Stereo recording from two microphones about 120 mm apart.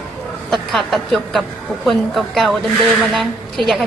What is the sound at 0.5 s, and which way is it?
A woman's voice, centre (ahead or behind).